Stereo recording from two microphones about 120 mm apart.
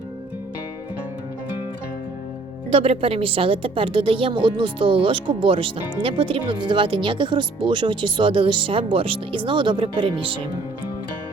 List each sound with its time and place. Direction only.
2.7 s a woman's voice: 55° right (ahead or behind)